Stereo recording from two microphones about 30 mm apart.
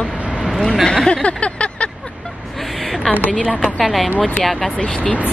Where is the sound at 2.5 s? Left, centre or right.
Centre.